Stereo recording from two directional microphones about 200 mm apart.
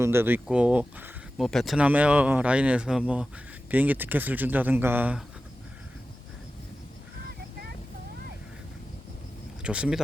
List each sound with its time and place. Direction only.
0.0 s speech: 10° right (ahead or behind)
9.6 s speech: 5° right (ahead or behind)